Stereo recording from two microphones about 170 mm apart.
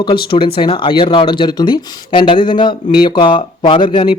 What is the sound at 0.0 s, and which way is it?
Speech, 30° left (ahead or behind).